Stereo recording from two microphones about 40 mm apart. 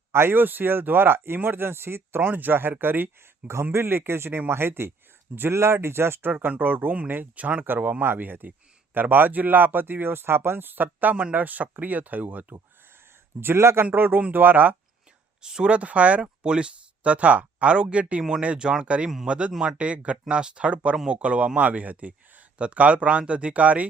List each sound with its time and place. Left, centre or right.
0.1 s speech: right
2.2 s speech: right
2.6 s speech: right
4.4 s speech: right
6.3 s speech: right
7.3 s speech: right
13.4 s a man's voice: right
13.9 s speech: right
15.4 s speech: right
15.7 s speech: right
16.2 s speech: right
18.2 s speech: centre; by 23.8 s right